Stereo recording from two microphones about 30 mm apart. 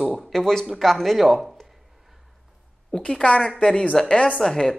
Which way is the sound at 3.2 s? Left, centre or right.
Left.